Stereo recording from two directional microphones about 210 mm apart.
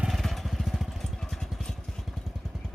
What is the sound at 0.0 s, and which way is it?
Vehicle, centre (ahead or behind).